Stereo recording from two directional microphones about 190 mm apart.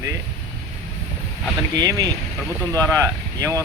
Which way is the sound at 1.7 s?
20° right (ahead or behind).